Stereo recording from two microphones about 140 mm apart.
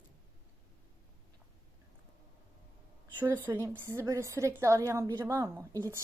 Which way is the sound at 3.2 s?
15° right (ahead or behind).